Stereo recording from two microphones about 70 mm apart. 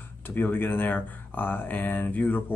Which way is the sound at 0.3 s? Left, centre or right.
Left.